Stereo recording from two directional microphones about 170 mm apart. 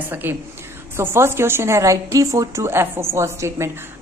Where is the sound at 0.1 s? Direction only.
10° right (ahead or behind).